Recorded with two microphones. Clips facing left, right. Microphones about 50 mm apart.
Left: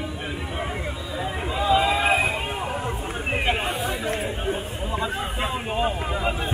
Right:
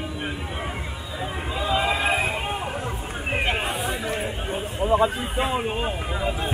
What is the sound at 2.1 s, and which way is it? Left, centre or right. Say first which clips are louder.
Run: left 2 dB; centre.